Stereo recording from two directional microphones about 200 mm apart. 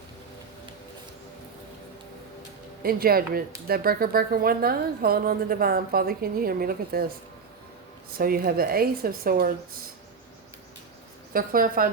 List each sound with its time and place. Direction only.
2.8 s a woman's voice: 50° right (ahead or behind)
8.2 s a woman's voice: 50° right (ahead or behind)
11.3 s a woman's voice: 45° right (ahead or behind)